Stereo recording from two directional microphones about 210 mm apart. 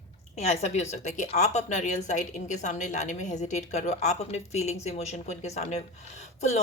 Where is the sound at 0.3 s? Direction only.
30° left (ahead or behind).